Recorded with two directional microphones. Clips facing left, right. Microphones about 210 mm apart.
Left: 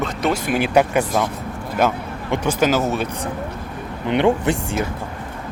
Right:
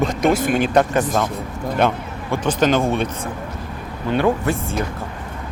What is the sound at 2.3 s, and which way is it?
Speech, 10° left (ahead or behind).